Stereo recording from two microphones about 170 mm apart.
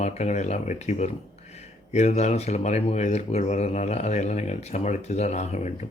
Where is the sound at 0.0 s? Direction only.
45° left (ahead or behind).